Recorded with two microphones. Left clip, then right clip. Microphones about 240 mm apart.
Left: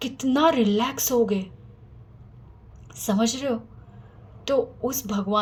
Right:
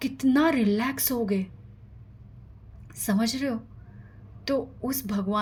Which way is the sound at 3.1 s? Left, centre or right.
Right.